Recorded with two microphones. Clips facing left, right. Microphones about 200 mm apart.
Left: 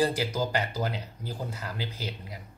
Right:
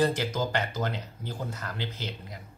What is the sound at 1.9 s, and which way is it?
Speech, 30° left (ahead or behind).